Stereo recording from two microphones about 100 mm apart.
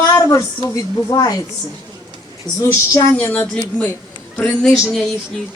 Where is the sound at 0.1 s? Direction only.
30° left (ahead or behind).